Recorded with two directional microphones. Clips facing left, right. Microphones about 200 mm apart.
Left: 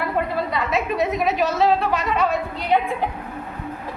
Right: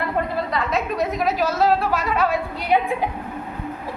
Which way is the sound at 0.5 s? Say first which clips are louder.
Even; centre (ahead or behind).